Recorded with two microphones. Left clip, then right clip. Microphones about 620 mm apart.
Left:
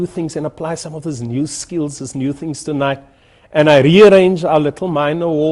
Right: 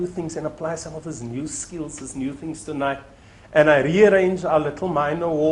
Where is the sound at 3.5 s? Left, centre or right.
Left.